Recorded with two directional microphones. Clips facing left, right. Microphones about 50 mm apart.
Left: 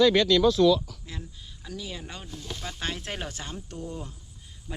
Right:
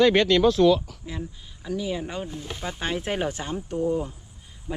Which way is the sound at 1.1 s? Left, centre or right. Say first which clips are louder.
Right 7 dB; centre.